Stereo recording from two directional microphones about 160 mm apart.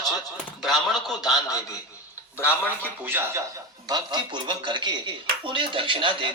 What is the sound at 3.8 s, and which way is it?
A man's voice, 25° right (ahead or behind).